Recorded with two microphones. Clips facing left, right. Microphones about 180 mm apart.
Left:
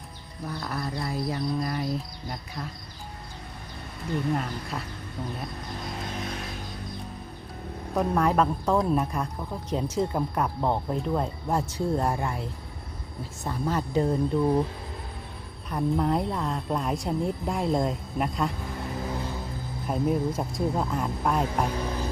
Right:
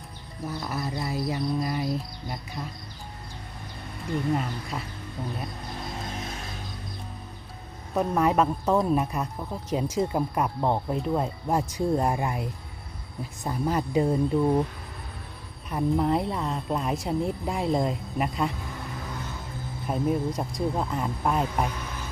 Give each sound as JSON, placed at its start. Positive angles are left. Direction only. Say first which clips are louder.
{"t": 0.4, "sound": "speech", "louder": "right 1 dB", "side_deg": -5}
{"t": 4.7, "sound": "speech", "louder": "even", "side_deg": -10}
{"t": 7.9, "sound": "speech", "louder": "right 1 dB", "side_deg": -5}
{"t": 15.7, "sound": "speech", "louder": "right 1 dB", "side_deg": 0}
{"t": 19.9, "sound": "speech", "louder": "even", "side_deg": 0}
{"t": 21.8, "sound": "music", "louder": "left 7 dB", "side_deg": 35}